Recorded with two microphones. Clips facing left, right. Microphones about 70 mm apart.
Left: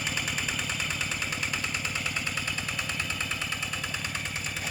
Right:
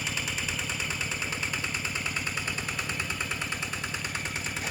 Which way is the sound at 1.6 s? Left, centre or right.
Centre.